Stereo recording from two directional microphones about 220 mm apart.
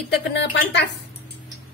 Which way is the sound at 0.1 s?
50° left (ahead or behind).